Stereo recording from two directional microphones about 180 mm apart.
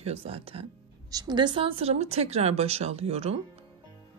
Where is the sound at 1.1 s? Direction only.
20° right (ahead or behind).